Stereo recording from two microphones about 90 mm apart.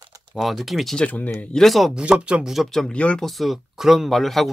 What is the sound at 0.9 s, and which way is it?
Speech, 15° left (ahead or behind).